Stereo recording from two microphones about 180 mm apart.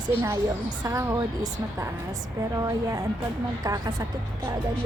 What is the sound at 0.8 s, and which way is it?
Speech, 15° right (ahead or behind).